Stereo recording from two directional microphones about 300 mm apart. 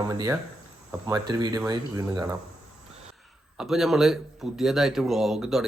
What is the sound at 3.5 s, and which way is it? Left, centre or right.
Speech, centre.